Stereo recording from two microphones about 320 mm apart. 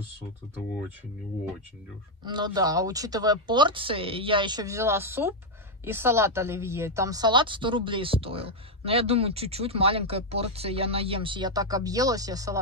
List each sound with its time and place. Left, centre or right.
2.2 s speech: centre